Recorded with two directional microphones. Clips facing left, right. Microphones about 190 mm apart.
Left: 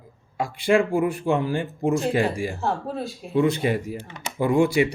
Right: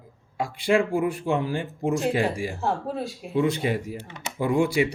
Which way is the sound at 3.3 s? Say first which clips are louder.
Left 3 dB; 50° left (ahead or behind).